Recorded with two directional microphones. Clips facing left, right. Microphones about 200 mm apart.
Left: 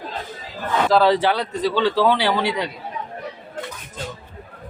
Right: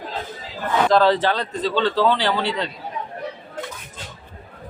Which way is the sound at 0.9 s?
10° left (ahead or behind).